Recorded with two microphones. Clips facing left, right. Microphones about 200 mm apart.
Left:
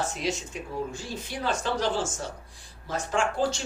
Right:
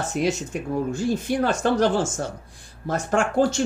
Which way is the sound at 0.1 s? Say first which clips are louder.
Right 7 dB; 50° right (ahead or behind).